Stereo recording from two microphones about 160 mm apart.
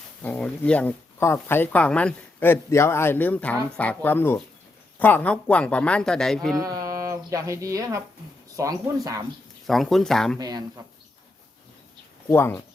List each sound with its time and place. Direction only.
0.2 s speech: 10° left (ahead or behind)
6.6 s speech: 20° right (ahead or behind)
9.6 s speech: centre (ahead or behind)
10.3 s speech: 25° right (ahead or behind)
12.3 s speech: 15° left (ahead or behind)